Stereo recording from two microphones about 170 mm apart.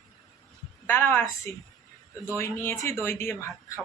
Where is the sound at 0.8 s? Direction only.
15° left (ahead or behind).